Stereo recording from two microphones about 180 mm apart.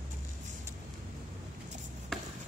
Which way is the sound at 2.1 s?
5° left (ahead or behind).